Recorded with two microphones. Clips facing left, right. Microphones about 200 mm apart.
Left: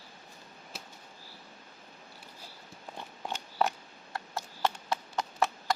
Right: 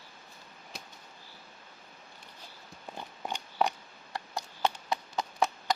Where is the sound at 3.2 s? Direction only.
Centre (ahead or behind).